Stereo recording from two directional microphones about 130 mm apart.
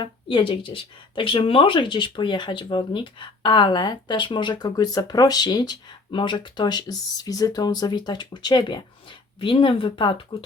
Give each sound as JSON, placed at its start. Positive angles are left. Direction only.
{"t": 0.0, "sound": "speech", "side_deg": 40}